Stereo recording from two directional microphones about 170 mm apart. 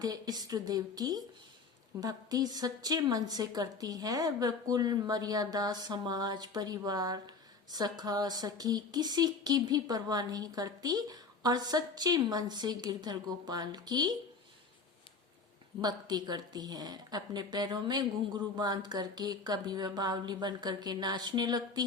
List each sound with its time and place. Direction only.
0.0 s speech: 25° right (ahead or behind)
15.8 s speech: 25° right (ahead or behind)